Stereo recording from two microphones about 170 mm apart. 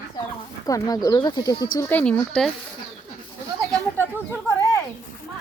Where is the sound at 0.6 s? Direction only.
20° left (ahead or behind).